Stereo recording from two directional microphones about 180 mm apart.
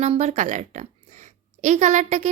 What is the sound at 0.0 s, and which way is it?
A woman's voice, 40° right (ahead or behind).